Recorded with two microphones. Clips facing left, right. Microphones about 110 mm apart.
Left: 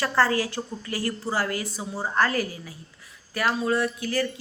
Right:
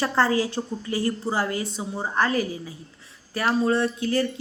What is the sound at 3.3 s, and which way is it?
Speech, 30° right (ahead or behind).